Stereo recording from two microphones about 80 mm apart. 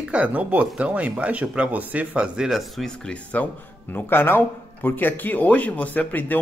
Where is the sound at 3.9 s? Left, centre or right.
Left.